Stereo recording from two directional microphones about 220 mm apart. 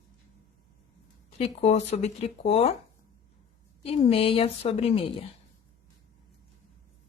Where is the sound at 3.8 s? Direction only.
25° left (ahead or behind).